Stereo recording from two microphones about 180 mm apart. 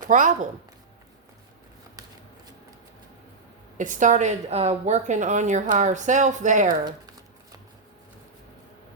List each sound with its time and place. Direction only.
0.1 s speech: 45° right (ahead or behind)
3.8 s a woman's voice: 45° right (ahead or behind)